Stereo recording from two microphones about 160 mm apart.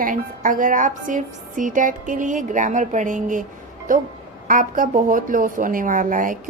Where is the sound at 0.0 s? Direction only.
55° right (ahead or behind).